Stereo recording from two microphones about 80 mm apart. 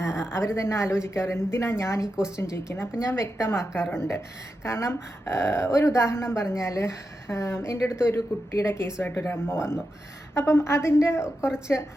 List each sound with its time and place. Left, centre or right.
0.3 s speech: left
2.1 s speech: centre
2.4 s speech: left